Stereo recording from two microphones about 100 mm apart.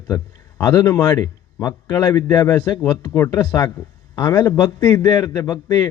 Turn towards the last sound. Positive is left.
turn(degrees=40)  # may be behind; listen again after turning